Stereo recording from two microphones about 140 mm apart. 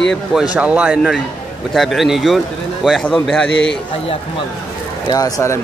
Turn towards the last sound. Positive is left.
turn(degrees=25)  # may be behind; listen again after turning